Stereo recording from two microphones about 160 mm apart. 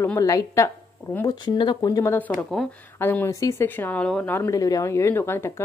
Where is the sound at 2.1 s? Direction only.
10° left (ahead or behind).